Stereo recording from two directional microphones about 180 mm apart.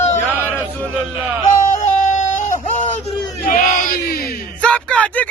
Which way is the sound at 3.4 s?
45° left (ahead or behind).